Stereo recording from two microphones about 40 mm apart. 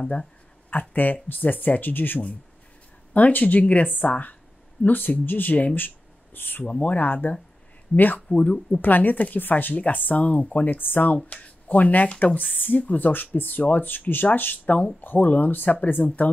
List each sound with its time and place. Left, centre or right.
0.7 s speech: left
3.1 s speech: left
5.8 s a sound: left
6.6 s speech: left
11.2 s speech: left